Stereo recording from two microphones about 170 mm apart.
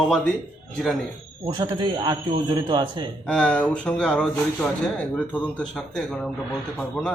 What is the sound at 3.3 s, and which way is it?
Speech, 5° left (ahead or behind).